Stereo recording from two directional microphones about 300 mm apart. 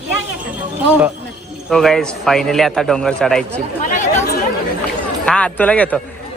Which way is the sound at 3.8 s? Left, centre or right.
Left.